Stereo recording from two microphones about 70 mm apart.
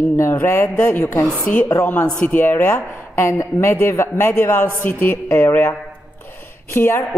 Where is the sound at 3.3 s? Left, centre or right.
Left.